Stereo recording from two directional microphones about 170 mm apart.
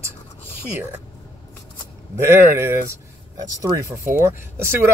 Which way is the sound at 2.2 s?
15° right (ahead or behind).